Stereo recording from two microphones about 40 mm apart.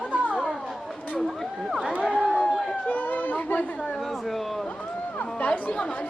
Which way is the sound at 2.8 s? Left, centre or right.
Left.